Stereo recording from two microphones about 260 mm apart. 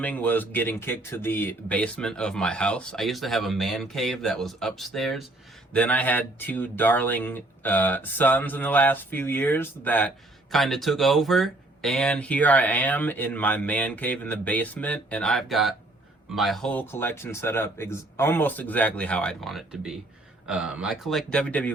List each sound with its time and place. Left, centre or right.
0.0 s speech: centre